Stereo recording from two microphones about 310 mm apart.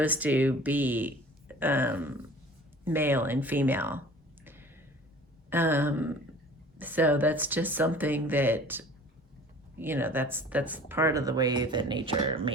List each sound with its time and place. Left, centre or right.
0.0 s speech: centre
4.4 s a sound: centre
5.5 s speech: centre